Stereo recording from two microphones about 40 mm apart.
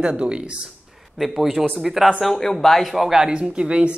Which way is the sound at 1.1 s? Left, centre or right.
Centre.